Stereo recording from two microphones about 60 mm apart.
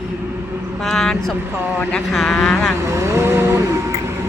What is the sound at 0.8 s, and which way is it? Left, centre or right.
Speech, centre.